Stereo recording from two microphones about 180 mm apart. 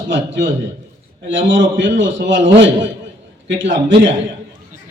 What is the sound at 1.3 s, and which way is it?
A man's voice, 90° right.